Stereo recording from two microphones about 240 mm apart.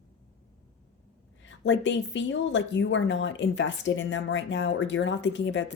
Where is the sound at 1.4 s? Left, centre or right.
Left.